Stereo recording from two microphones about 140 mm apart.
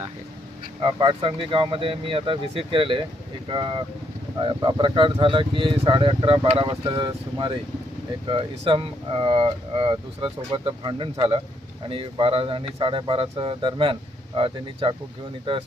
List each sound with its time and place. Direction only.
0.8 s speech: 35° right (ahead or behind)